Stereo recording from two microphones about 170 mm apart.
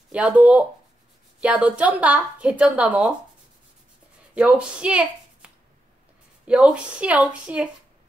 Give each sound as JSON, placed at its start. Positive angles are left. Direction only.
{"t": 0.1, "sound": "a woman's voice", "side_deg": -10}
{"t": 4.4, "sound": "a woman's voice", "side_deg": -5}